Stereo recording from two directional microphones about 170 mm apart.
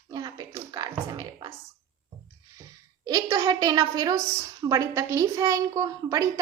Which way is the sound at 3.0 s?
20° right (ahead or behind).